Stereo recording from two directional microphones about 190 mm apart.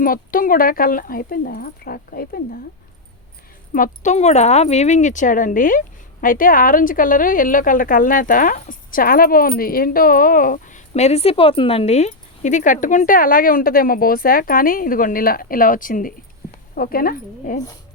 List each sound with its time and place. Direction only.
0.0 s a woman's voice: 50° left (ahead or behind)
3.7 s a woman's voice: 40° left (ahead or behind)